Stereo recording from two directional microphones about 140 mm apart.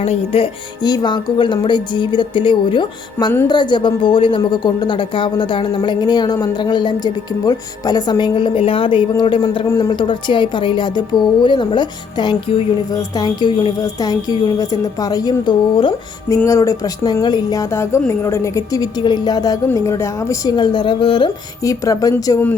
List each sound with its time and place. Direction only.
0.0 s speech: 45° left (ahead or behind)
9.6 s speech: 25° left (ahead or behind)
12.9 s a woman's voice: 25° left (ahead or behind)
16.3 s a woman's voice: 20° left (ahead or behind)
21.6 s a woman's voice: 25° left (ahead or behind)